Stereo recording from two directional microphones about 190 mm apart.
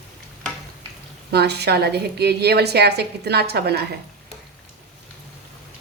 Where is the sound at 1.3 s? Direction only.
60° right (ahead or behind).